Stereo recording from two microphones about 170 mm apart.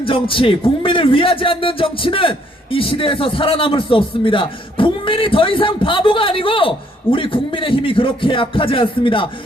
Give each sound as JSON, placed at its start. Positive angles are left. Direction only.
{"t": 0.0, "sound": "speech", "side_deg": 30}